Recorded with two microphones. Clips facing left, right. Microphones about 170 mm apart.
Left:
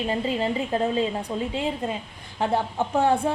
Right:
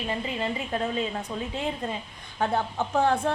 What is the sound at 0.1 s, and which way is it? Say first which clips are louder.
Speech: left 4 dB; 35° left (ahead or behind).